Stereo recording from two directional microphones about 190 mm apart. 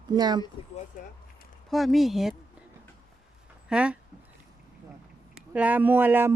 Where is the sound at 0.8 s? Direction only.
45° left (ahead or behind).